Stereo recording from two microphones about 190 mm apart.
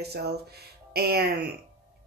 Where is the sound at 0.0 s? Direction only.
60° right (ahead or behind).